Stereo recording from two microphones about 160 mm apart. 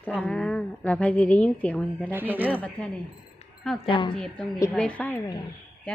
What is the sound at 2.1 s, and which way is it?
Speech, 10° right (ahead or behind).